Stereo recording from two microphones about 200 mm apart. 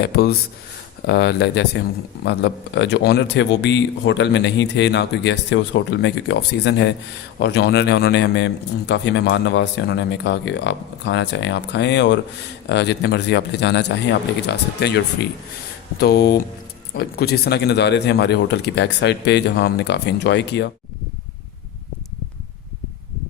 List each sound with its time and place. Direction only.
0.0 s speech: 50° left (ahead or behind)
16.0 s speech: 55° left (ahead or behind)